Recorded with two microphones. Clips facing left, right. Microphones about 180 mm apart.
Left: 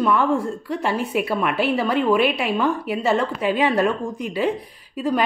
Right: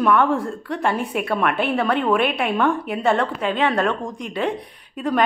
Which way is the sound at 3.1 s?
5° left (ahead or behind).